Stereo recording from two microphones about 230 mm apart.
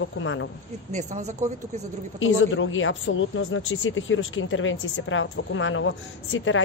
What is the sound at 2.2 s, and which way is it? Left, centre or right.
Speech, left.